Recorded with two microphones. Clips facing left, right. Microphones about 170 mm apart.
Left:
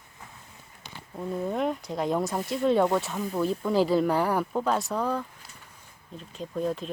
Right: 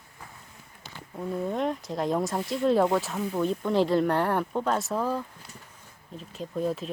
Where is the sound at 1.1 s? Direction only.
Centre (ahead or behind).